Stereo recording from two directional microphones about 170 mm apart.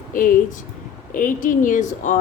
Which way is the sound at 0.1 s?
50° left (ahead or behind).